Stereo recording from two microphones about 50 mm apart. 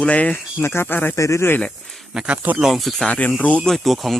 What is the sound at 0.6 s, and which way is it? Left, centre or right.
Speech, left.